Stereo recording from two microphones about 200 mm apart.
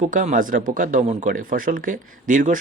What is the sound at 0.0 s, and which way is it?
Speech, 40° right (ahead or behind).